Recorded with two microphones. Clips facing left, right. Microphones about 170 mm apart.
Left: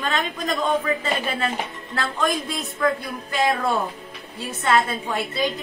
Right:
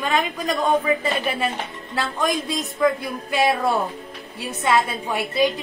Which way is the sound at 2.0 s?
15° right (ahead or behind).